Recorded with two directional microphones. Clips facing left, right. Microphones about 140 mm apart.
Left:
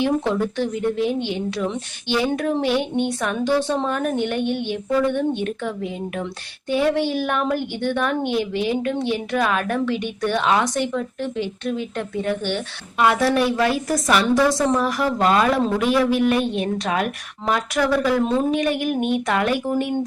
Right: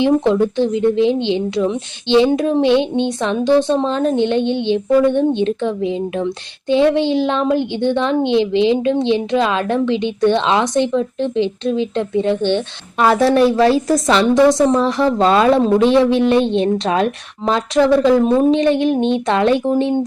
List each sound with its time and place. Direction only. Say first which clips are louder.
0.0 s a woman's voice: right 7 dB; 20° right (ahead or behind)